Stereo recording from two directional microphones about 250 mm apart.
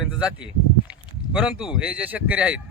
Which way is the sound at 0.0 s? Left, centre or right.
Centre.